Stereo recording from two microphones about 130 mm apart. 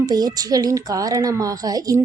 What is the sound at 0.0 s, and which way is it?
A woman's voice, 30° right (ahead or behind).